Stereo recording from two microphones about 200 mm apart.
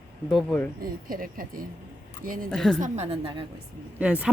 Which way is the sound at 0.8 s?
45° right (ahead or behind).